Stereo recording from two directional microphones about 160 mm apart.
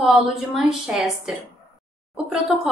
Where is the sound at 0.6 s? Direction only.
5° right (ahead or behind).